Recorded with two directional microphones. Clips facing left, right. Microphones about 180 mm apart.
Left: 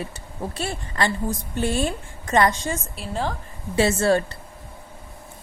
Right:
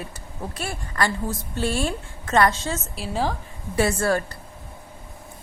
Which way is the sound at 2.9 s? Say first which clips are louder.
Right 2 dB; 5° right (ahead or behind).